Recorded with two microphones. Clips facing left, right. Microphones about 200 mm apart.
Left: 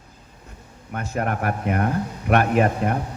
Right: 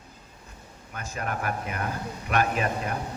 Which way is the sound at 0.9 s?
60° left (ahead or behind).